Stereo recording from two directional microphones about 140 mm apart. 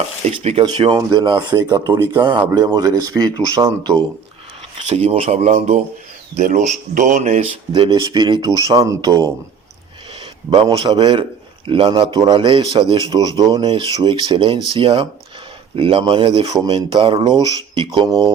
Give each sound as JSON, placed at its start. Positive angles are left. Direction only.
{"t": 0.3, "sound": "speech", "side_deg": -45}
{"t": 0.8, "sound": "a man's voice", "side_deg": -30}
{"t": 4.9, "sound": "speech", "side_deg": -45}
{"t": 7.7, "sound": "a man's voice", "side_deg": -35}